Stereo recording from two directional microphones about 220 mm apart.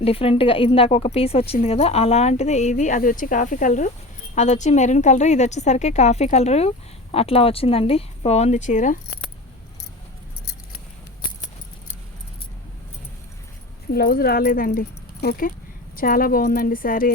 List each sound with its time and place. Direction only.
0.0 s a woman's voice: 25° left (ahead or behind)
13.9 s a woman's voice: 45° left (ahead or behind)